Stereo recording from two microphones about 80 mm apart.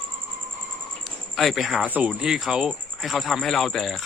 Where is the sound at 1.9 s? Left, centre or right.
Centre.